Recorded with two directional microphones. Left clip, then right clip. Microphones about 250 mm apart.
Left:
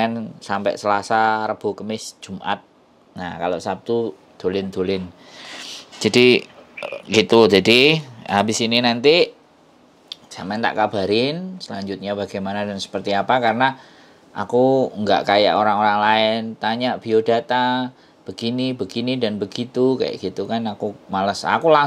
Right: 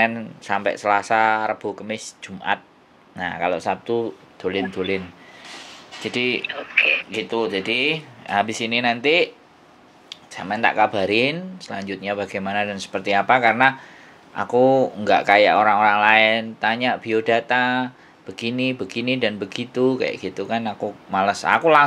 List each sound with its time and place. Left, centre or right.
0.0 s speech: left
6.0 s speech: left
6.8 s speech: right
7.1 s speech: left
10.5 s speech: left